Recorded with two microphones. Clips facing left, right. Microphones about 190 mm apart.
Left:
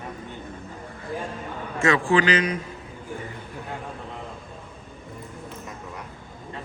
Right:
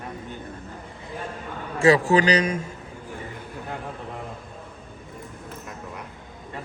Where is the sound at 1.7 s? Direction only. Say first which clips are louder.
Right 3 dB; 35° right (ahead or behind).